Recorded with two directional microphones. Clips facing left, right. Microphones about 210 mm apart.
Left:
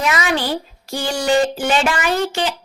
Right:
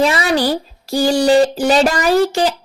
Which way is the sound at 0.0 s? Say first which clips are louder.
Right 5 dB; 35° right (ahead or behind).